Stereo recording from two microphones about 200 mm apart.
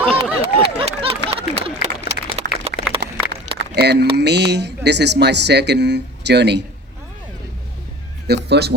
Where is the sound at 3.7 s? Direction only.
55° right (ahead or behind).